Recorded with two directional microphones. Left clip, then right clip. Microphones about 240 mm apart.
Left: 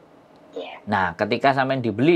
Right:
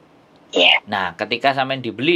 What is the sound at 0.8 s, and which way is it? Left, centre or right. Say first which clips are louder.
Speech: even; left.